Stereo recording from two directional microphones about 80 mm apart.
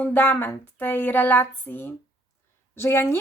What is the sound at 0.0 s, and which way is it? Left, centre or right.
A woman's voice, left.